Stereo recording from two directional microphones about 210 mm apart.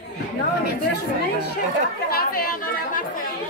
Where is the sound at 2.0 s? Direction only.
45° left (ahead or behind).